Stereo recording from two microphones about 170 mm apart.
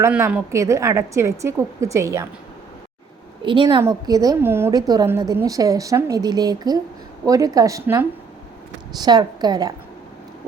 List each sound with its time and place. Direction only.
0.0 s a woman's voice: 10° right (ahead or behind)
3.4 s a woman's voice: 30° right (ahead or behind)
3.8 s a woman's voice: 20° right (ahead or behind)